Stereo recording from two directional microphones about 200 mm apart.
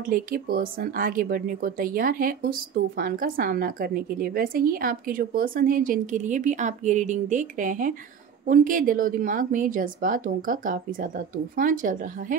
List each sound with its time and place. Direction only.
0.0 s speech: 45° right (ahead or behind)